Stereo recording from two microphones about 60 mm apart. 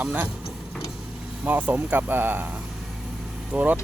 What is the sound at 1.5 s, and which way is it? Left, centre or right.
Speech, right.